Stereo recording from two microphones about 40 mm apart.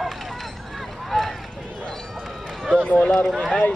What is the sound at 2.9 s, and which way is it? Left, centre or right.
Run, centre.